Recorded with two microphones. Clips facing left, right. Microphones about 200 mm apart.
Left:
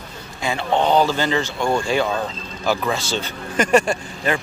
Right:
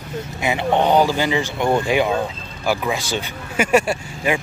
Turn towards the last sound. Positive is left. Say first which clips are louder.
# right 1 dB
turn(degrees=-10)  # may be behind; listen again after turning